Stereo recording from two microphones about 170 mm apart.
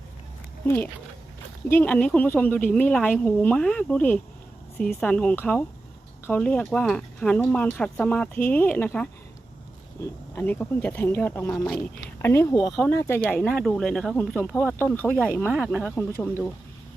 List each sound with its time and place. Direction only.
0.6 s speech: 10° left (ahead or behind)
12.2 s speech: 15° left (ahead or behind)
15.4 s speech: 5° right (ahead or behind)
15.8 s speech: 10° left (ahead or behind)